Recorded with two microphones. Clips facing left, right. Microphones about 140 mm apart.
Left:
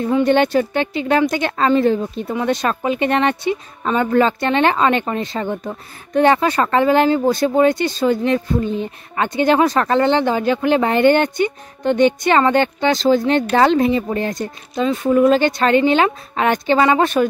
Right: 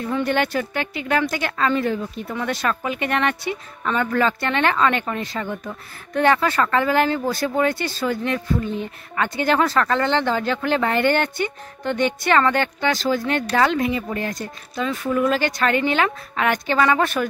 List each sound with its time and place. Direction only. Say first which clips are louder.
0.1 s a woman's voice: left 7 dB; 20° left (ahead or behind)